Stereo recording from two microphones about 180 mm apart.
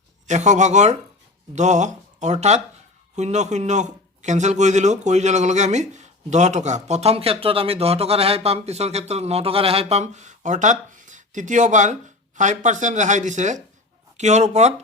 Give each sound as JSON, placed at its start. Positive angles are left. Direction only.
{"t": 0.3, "sound": "speech", "side_deg": -40}